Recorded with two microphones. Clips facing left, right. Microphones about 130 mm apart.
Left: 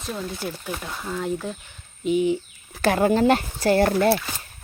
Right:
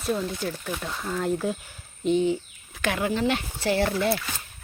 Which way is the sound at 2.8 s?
40° left (ahead or behind).